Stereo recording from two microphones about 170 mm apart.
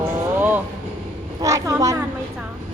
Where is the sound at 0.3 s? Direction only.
10° right (ahead or behind).